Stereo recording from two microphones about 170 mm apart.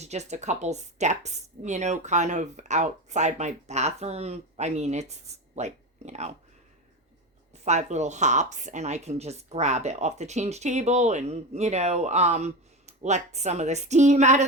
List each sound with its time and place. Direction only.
0.0 s speech: 40° right (ahead or behind)
7.5 s speech: 40° right (ahead or behind)